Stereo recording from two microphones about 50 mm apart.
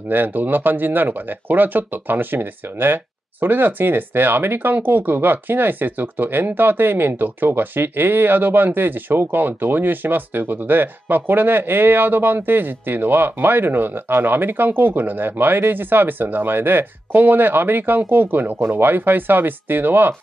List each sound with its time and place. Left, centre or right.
0.1 s speech: right